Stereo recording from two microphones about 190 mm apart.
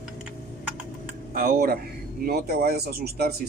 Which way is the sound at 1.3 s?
50° right (ahead or behind).